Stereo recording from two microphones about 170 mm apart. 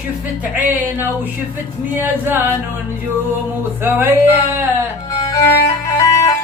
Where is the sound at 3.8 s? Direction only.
10° right (ahead or behind).